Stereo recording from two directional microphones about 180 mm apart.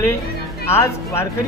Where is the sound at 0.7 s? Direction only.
15° left (ahead or behind).